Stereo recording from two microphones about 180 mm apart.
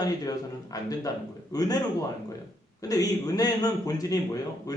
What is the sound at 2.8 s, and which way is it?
A man's voice, 20° left (ahead or behind).